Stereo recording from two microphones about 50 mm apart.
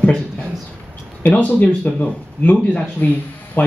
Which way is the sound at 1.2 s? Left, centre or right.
Left.